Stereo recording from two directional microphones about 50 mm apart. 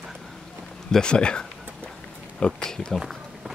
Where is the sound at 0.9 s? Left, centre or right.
Centre.